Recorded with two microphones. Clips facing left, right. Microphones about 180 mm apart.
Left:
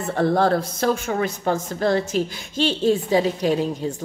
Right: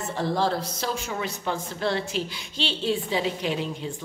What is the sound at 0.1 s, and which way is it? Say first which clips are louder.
Speech: left 7 dB; 55° left (ahead or behind).